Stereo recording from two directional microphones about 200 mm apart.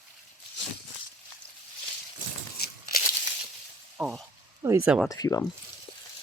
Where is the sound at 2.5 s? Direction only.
50° left (ahead or behind).